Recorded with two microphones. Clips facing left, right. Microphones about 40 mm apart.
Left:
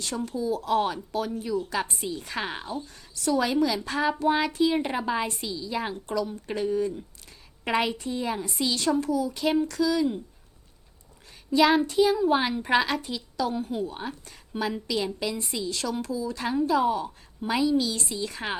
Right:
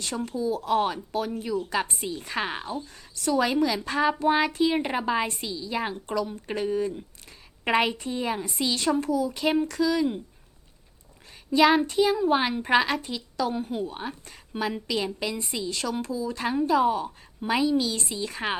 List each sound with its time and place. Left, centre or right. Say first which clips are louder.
0.3 s a woman's voice: right 1 dB; centre
2.8 s a woman's voice: even; centre
11.5 s child singing: right 1 dB; centre
11.8 s a woman's voice: left 1 dB; centre